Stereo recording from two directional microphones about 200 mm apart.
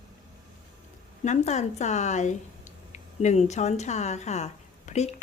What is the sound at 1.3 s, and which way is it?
A woman's voice, 35° left (ahead or behind).